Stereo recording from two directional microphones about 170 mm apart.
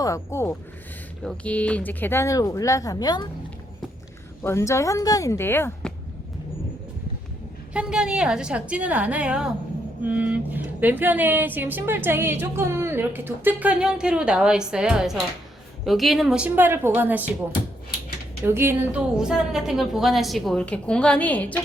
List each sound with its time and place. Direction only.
0.0 s speech: 15° left (ahead or behind)
4.4 s speech: 15° left (ahead or behind)
7.7 s speech: 5° right (ahead or behind)
18.4 s a woman's voice: 15° right (ahead or behind); by 21.6 s 10° left (ahead or behind)